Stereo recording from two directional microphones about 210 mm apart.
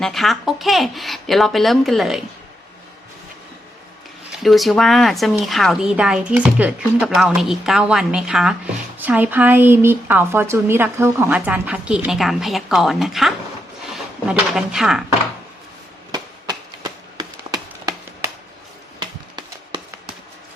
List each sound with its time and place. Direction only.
0.0 s speech: centre (ahead or behind)
4.3 s a woman's voice: centre (ahead or behind)
16.1 s a sound: 20° right (ahead or behind)